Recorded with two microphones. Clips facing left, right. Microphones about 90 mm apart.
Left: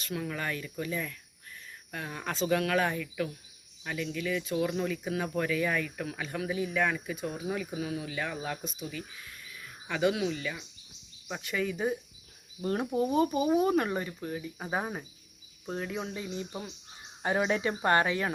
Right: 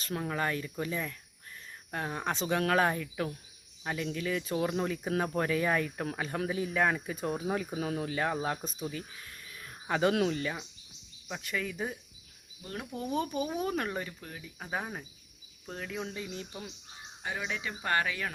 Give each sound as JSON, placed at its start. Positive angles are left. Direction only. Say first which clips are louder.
{"t": 0.0, "sound": "speech", "louder": "right 2 dB", "side_deg": -30}
{"t": 9.6, "sound": "insect", "louder": "right 1 dB", "side_deg": -35}
{"t": 10.2, "sound": "speech", "louder": "right 3 dB", "side_deg": -50}
{"t": 10.4, "sound": "speech", "louder": "right 2 dB", "side_deg": -30}
{"t": 11.3, "sound": "speech", "louder": "left 3 dB", "side_deg": 5}
{"t": 12.6, "sound": "speech", "louder": "left 10 dB", "side_deg": 30}
{"t": 12.9, "sound": "speech", "louder": "left 5 dB", "side_deg": 5}
{"t": 17.2, "sound": "speech", "louder": "left 8 dB", "side_deg": 45}